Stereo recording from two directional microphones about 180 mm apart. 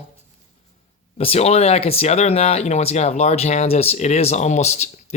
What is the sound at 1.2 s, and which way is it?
Speech, 35° left (ahead or behind).